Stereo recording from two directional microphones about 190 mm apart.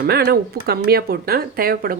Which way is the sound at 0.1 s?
60° right (ahead or behind).